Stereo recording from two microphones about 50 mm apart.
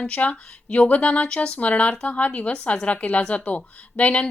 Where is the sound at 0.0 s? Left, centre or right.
Left.